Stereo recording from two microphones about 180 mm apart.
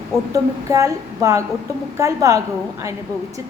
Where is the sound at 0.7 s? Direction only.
15° right (ahead or behind).